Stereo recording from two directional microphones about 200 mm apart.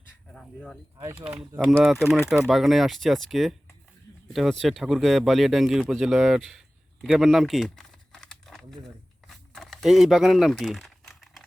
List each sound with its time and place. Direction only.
0.3 s speech: 5° left (ahead or behind)
0.9 s speech: 10° right (ahead or behind)
9.2 s a sound: centre (ahead or behind)